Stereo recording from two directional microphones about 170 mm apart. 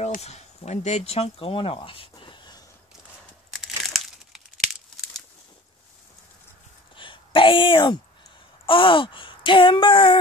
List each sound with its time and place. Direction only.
0.0 s speech: 40° left (ahead or behind)
3.5 s crumpling: centre (ahead or behind)
7.0 s a sound: 30° left (ahead or behind)
8.6 s speech: 30° left (ahead or behind)